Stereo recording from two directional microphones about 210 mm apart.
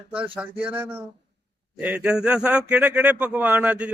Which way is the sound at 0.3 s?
5° right (ahead or behind).